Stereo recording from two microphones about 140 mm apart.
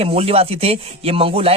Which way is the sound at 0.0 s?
45° right (ahead or behind).